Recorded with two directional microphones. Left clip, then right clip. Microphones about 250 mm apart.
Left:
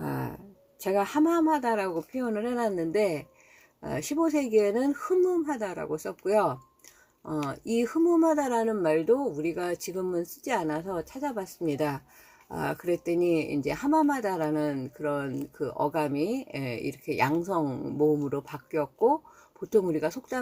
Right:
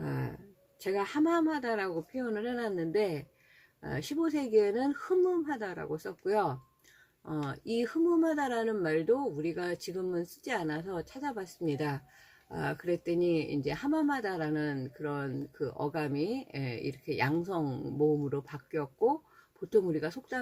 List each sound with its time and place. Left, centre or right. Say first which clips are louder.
0.0 s a sound: left 5 dB; centre
0.8 s speech: left 5 dB; centre
7.7 s a woman's voice: left 4 dB; centre